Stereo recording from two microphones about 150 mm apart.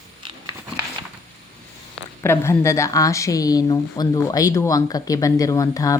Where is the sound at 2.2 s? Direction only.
15° left (ahead or behind).